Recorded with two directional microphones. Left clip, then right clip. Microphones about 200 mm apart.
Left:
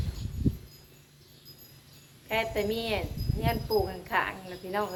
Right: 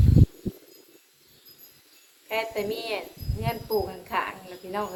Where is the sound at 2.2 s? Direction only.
5° left (ahead or behind).